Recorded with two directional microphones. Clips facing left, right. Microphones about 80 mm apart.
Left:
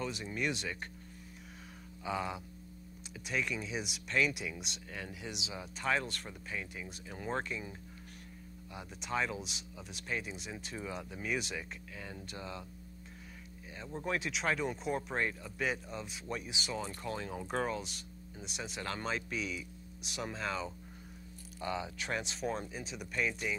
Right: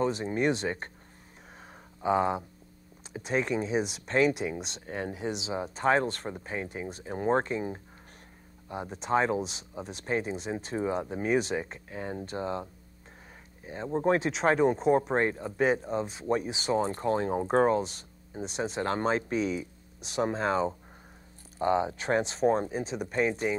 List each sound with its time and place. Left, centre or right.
0.0 s speech: right
2.0 s speech: right
13.7 s speech: right